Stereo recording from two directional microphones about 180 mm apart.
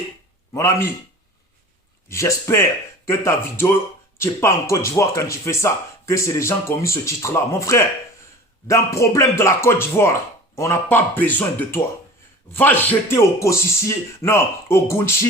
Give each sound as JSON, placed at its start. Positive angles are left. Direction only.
{"t": 0.5, "sound": "speech", "side_deg": 15}
{"t": 2.0, "sound": "speech", "side_deg": 15}